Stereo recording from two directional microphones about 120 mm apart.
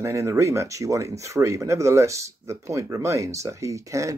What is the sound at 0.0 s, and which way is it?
Speech, 25° right (ahead or behind).